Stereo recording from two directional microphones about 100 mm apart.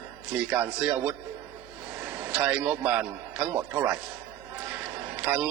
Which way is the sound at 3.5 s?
25° right (ahead or behind).